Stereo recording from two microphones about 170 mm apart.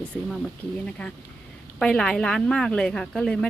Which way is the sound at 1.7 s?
5° left (ahead or behind).